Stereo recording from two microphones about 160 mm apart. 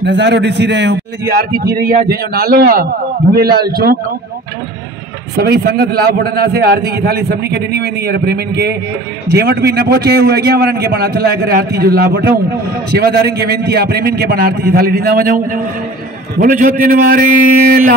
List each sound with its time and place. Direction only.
0.0 s a man's voice: 90° right
1.8 s a man's voice: 65° right (ahead or behind)
5.4 s a man's voice: 85° right; by 17.9 s 60° right (ahead or behind)